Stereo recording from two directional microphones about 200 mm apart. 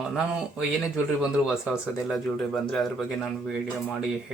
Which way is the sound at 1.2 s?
5° right (ahead or behind).